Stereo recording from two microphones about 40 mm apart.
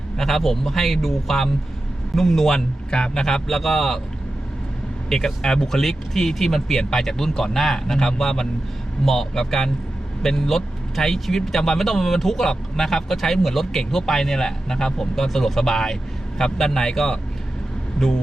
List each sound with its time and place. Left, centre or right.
0.2 s a man's voice: centre
2.6 s a man's voice: left
3.2 s speech: centre
5.0 s speech: centre